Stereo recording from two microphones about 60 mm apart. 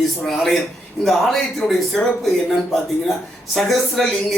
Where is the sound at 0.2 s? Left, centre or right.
Centre.